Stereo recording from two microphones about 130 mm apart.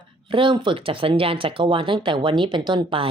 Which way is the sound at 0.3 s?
40° right (ahead or behind).